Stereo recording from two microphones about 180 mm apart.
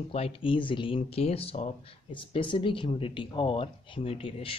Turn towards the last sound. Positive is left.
turn(degrees=30)  # may be behind; listen again after turning